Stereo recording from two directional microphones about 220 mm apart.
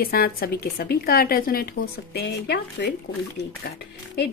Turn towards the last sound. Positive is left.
turn(degrees=45)  # may be behind; listen again after turning